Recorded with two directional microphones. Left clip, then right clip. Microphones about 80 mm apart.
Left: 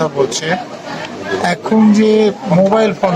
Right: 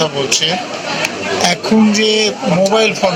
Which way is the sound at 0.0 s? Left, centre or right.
Left.